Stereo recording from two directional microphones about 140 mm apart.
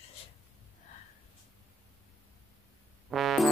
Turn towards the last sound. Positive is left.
turn(degrees=0)  # may be behind; listen again after turning